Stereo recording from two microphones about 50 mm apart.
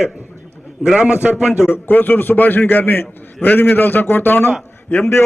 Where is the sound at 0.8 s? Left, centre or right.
Centre.